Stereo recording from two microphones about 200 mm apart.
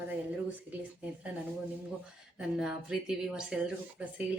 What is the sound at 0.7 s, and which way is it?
Speech, 5° right (ahead or behind).